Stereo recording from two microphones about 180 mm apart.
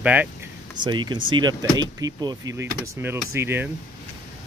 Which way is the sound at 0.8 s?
25° right (ahead or behind).